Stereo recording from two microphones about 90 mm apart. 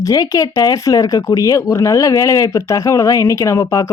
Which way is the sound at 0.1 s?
45° left (ahead or behind).